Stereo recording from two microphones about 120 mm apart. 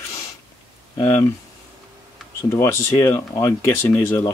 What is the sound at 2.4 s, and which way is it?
Speech, 20° left (ahead or behind).